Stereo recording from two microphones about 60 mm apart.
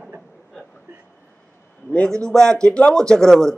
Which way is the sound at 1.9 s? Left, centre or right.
Centre.